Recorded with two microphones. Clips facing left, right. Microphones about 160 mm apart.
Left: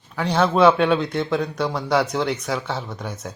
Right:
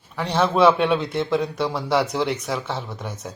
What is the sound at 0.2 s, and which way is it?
A woman's voice, centre (ahead or behind).